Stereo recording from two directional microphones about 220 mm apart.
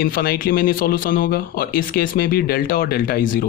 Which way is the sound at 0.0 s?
40° left (ahead or behind).